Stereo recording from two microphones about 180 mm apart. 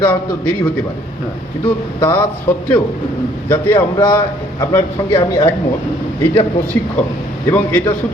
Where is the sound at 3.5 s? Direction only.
10° left (ahead or behind).